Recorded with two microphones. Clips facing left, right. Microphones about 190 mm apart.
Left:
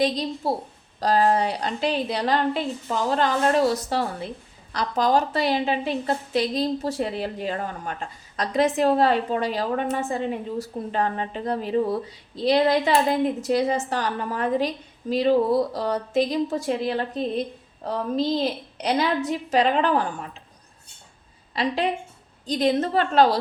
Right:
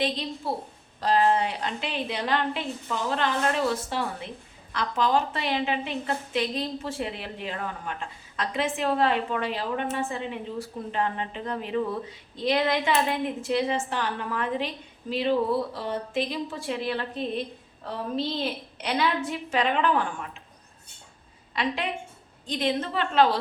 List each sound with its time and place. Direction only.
0.0 s a woman's voice: 40° left (ahead or behind)
21.5 s a woman's voice: 35° left (ahead or behind)